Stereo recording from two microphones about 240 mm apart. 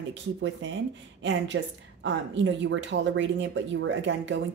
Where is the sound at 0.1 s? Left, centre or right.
Right.